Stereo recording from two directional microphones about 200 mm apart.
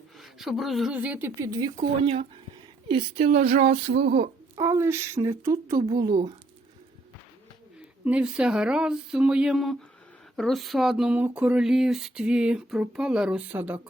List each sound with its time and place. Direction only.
0.2 s speech: centre (ahead or behind); by 1.7 s 15° right (ahead or behind)
1.8 s speech: 30° right (ahead or behind)
4.5 s speech: 15° right (ahead or behind)
8.0 s speech: 5° right (ahead or behind)